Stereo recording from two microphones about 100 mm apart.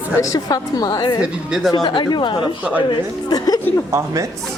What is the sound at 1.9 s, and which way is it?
Speech, 50° left (ahead or behind).